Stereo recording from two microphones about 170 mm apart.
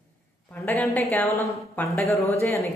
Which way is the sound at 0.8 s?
Centre (ahead or behind).